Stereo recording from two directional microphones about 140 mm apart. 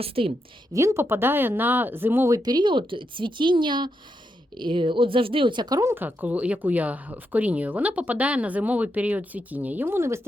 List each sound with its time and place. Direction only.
0.0 s a woman's voice: 45° right (ahead or behind)
0.7 s speech: 20° right (ahead or behind)
5.9 s speech: 15° right (ahead or behind)